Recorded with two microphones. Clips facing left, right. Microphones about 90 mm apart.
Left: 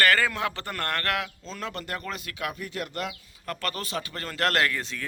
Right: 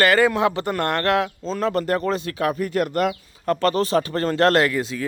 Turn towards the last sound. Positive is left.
turn(degrees=-10)  # may be behind; listen again after turning